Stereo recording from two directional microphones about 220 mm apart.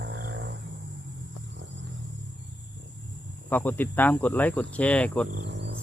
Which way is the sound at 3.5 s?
10° left (ahead or behind).